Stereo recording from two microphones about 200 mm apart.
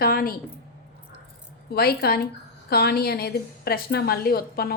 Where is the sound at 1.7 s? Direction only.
50° left (ahead or behind).